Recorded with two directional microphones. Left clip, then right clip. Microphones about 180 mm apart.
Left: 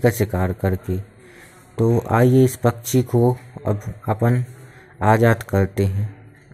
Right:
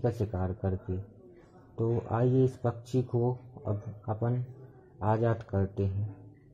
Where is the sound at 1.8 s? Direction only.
25° left (ahead or behind).